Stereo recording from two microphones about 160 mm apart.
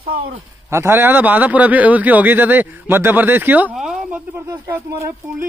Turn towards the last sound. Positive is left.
turn(degrees=-15)  # may be behind; listen again after turning